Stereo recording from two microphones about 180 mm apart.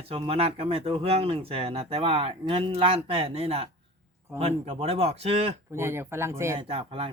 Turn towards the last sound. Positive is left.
turn(degrees=-30)  # may be behind; listen again after turning